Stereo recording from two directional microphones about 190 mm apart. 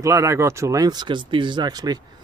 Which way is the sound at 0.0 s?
15° right (ahead or behind).